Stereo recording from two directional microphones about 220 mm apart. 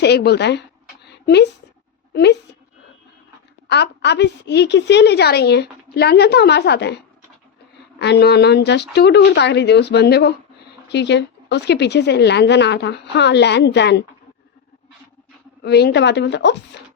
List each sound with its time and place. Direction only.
0.0 s a woman's voice: 50° left (ahead or behind)
1.0 s a sound: 50° left (ahead or behind)
2.1 s a woman's voice: 50° left (ahead or behind)
3.7 s a woman's voice: 50° left (ahead or behind)
15.6 s a woman's voice: 50° left (ahead or behind)